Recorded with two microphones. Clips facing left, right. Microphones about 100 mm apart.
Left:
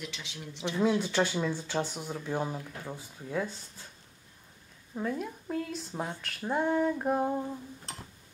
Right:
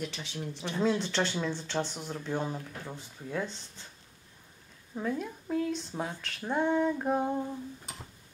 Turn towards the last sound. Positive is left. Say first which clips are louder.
# even
turn(degrees=0)  # may be behind; listen again after turning